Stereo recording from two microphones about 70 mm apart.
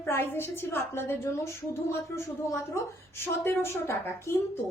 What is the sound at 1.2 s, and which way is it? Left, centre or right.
Speech, left.